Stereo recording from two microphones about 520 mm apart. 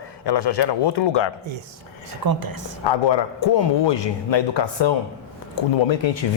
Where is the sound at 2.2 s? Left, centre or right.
Right.